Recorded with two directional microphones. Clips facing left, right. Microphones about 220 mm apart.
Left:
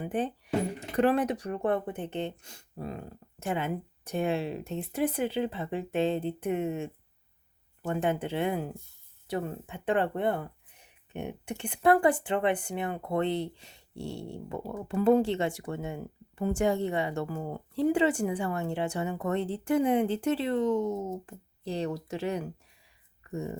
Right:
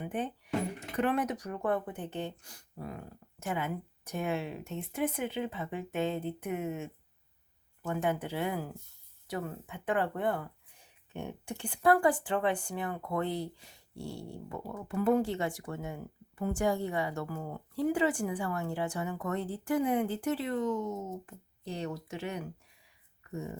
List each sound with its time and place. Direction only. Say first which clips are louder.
0.0 s speech: left 4 dB; 35° left (ahead or behind)